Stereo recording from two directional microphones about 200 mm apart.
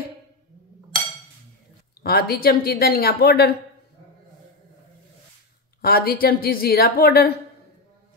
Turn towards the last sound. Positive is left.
turn(degrees=50)  # may be behind; listen again after turning